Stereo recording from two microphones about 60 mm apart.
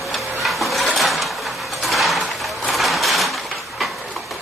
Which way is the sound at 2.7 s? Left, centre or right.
Centre.